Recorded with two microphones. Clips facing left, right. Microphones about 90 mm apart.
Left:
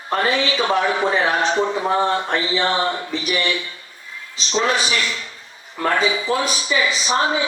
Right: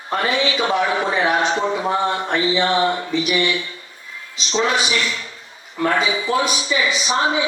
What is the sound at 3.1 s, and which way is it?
Speech, 35° left (ahead or behind).